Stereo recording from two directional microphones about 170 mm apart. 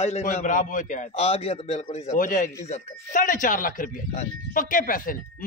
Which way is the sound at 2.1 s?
55° left (ahead or behind).